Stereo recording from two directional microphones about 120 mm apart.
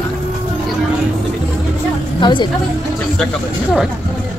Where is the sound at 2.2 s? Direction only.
40° left (ahead or behind).